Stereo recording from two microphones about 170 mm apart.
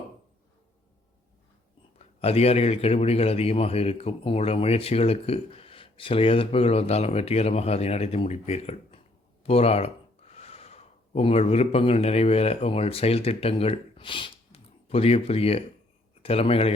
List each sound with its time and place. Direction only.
2.0 s a man's voice: 35° left (ahead or behind)